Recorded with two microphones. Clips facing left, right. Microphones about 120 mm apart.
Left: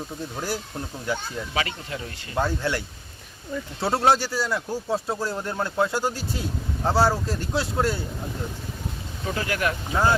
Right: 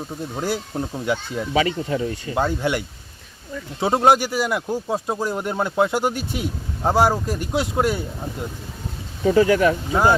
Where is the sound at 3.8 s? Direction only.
15° right (ahead or behind).